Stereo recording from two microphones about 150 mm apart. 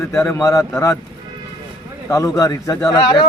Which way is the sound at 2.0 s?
25° left (ahead or behind).